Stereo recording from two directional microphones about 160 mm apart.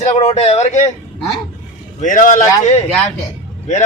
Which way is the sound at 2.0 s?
55° left (ahead or behind).